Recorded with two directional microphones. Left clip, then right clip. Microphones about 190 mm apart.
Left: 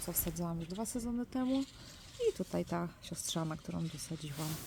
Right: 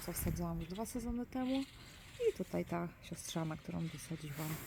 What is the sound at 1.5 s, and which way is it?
Speech, 55° left (ahead or behind).